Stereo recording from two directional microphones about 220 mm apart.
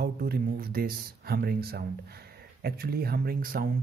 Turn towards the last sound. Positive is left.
turn(degrees=-40)  # may be behind; listen again after turning